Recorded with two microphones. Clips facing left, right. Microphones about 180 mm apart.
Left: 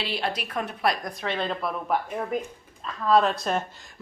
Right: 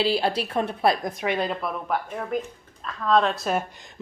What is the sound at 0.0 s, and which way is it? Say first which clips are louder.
Speech: right 7 dB; 30° right (ahead or behind).